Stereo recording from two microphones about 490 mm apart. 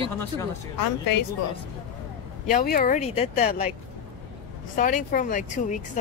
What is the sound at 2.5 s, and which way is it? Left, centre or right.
Speech, centre.